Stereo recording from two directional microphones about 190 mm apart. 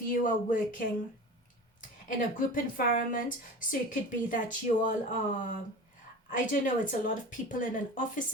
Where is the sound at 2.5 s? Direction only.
45° left (ahead or behind).